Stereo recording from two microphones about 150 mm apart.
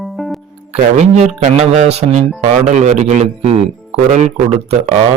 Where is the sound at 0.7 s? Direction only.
50° right (ahead or behind).